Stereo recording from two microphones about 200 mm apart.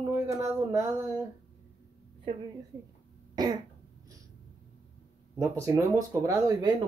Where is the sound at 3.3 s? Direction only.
20° right (ahead or behind).